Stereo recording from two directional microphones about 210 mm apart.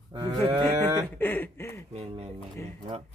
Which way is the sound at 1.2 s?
10° left (ahead or behind).